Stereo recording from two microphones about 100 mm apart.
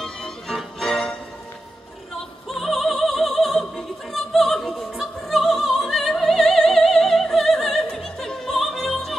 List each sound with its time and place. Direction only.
0.0 s music: 5° left (ahead or behind)
2.4 s opera: centre (ahead or behind)